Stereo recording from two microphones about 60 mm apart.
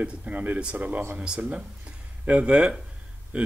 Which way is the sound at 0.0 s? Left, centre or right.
Right.